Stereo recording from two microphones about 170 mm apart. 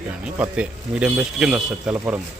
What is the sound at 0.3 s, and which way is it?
A man's voice, 10° right (ahead or behind).